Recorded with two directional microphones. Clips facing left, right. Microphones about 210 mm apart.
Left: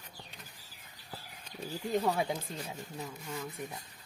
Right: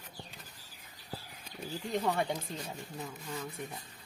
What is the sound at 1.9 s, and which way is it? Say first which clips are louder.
Speech: left 1 dB; 5° left (ahead or behind).